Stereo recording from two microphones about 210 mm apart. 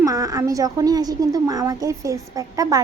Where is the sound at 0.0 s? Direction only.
15° right (ahead or behind).